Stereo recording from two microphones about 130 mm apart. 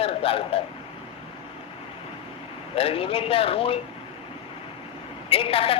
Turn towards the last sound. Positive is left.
turn(degrees=45)  # may be behind; listen again after turning